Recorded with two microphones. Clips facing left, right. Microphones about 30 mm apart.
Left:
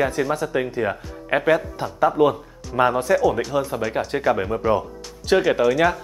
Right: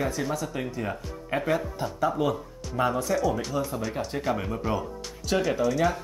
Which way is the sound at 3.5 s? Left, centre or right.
Left.